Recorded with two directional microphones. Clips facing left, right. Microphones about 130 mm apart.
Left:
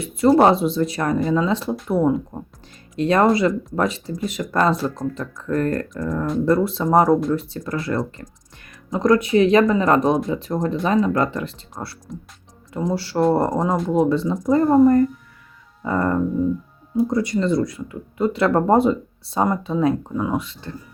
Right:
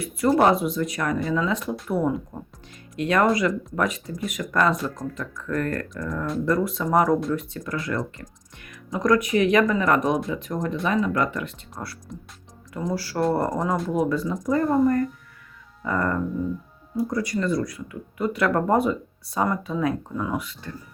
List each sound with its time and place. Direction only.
0.0 s speech: 25° left (ahead or behind)
12.1 s speech: centre (ahead or behind)
12.7 s speech: 25° left (ahead or behind)